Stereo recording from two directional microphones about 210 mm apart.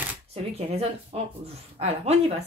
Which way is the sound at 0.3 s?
30° right (ahead or behind).